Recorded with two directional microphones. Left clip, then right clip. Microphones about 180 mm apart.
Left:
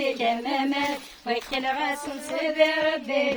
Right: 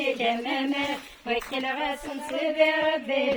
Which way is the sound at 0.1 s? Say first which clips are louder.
Left 1 dB; 40° left (ahead or behind).